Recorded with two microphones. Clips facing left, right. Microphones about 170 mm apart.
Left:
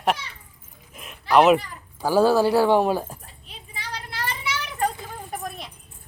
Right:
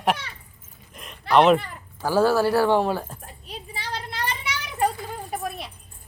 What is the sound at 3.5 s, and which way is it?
Vehicle, 30° right (ahead or behind).